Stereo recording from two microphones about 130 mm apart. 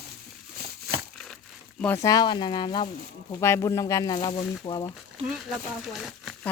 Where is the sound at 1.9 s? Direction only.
25° left (ahead or behind).